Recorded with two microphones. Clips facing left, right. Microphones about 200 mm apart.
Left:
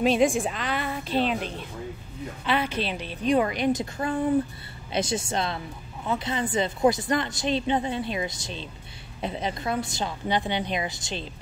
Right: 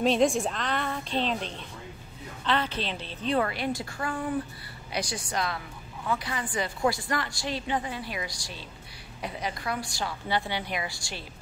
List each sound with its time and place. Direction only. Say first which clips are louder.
0.0 s a woman's voice: left 2 dB; centre (ahead or behind); by 11.2 s 20° left (ahead or behind)